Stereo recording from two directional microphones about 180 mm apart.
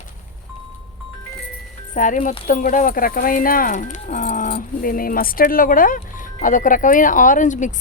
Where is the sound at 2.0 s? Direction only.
45° left (ahead or behind).